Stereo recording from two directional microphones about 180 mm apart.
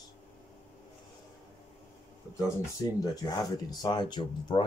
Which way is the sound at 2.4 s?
20° left (ahead or behind).